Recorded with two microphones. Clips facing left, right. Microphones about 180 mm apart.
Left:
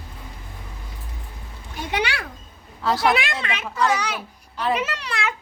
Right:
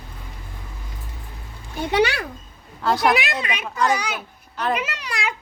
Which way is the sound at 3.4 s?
15° right (ahead or behind).